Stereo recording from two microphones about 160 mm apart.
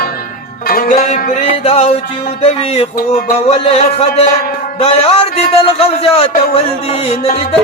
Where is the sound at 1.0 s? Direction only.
55° left (ahead or behind).